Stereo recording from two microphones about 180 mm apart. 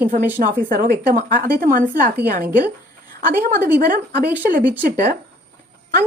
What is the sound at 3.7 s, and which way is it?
Speech, 55° right (ahead or behind).